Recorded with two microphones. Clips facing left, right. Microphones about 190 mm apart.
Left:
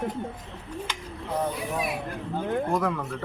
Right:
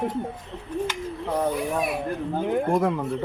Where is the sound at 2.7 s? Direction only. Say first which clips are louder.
Right 4 dB; 25° right (ahead or behind).